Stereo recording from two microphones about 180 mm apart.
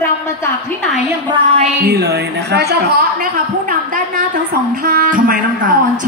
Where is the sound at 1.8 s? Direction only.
65° right (ahead or behind).